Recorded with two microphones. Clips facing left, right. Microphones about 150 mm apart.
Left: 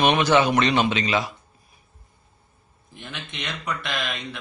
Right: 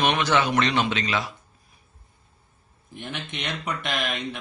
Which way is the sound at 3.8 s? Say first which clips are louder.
Right 1 dB; 15° right (ahead or behind).